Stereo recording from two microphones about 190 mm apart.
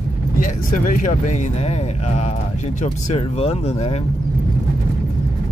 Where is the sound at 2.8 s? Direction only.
30° left (ahead or behind).